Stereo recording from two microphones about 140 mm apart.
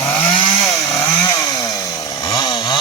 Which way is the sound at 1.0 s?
25° left (ahead or behind).